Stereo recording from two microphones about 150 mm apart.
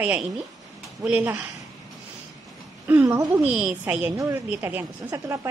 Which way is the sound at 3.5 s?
10° right (ahead or behind).